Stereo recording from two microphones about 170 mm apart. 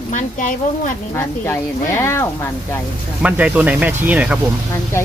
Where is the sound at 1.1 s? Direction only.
15° left (ahead or behind).